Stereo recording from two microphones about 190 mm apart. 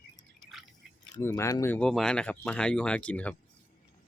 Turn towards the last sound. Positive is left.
turn(degrees=5)  # may be behind; listen again after turning